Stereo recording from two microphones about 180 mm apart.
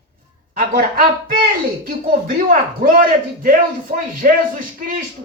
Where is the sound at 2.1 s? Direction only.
50° right (ahead or behind).